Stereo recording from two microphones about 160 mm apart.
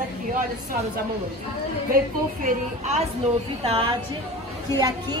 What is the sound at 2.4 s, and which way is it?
A woman's voice, 45° right (ahead or behind).